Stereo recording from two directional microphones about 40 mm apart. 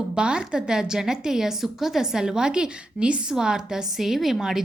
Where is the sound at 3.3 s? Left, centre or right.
Centre.